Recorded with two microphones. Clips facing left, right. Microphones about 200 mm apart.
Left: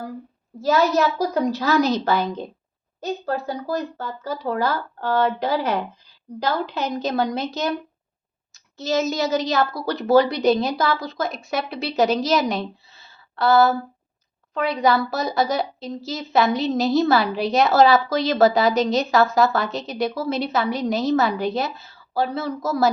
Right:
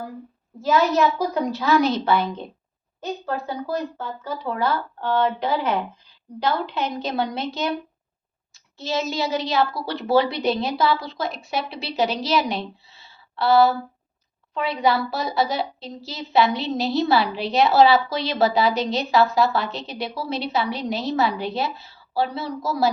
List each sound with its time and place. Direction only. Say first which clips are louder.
0.6 s a child's voice: even; 40° left (ahead or behind)